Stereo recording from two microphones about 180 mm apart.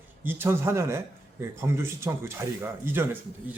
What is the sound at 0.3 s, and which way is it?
A man's voice, 10° right (ahead or behind).